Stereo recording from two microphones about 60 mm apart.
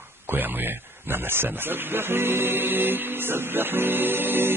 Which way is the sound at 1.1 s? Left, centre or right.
Right.